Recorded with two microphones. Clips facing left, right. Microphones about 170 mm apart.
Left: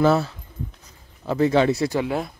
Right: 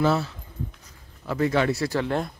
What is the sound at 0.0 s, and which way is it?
Speech, 50° left (ahead or behind).